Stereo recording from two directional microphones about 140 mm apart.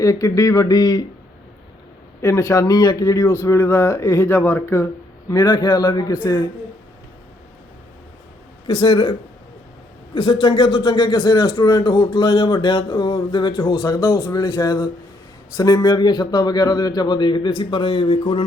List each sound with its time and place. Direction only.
0.0 s speech: 25° left (ahead or behind)
2.2 s speech: 20° left (ahead or behind)
5.3 s a man's voice: 30° left (ahead or behind)
8.6 s a man's voice: 40° left (ahead or behind)
10.4 s a man's voice: 40° left (ahead or behind)